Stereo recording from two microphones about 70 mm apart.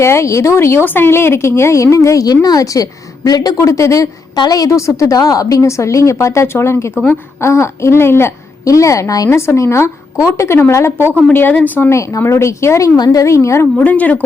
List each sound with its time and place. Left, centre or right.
0.0 s speech: left
4.4 s speech: left
8.6 s speech: left
9.3 s speech: left
11.3 s a woman's voice: left
11.9 s speech: left
13.0 s a woman's voice: left
13.2 s speech: left
13.7 s a woman's voice: left